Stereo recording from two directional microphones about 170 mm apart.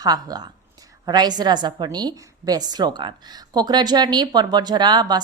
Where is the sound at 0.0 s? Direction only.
20° right (ahead or behind).